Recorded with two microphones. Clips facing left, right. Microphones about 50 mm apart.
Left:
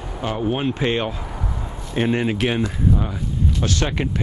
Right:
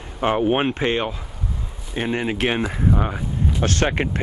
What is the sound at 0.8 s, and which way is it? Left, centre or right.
Speech, centre.